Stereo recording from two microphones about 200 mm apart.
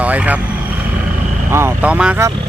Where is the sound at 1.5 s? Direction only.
10° right (ahead or behind).